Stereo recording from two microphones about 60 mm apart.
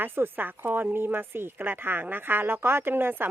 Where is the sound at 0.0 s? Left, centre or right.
Right.